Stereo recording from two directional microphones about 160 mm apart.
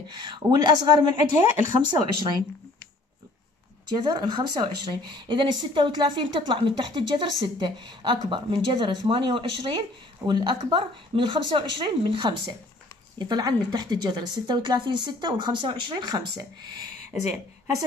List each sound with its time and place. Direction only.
0.1 s speech: 25° right (ahead or behind)
3.9 s speech: 25° right (ahead or behind)